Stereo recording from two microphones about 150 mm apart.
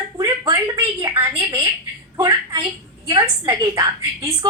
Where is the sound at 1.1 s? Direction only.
15° right (ahead or behind).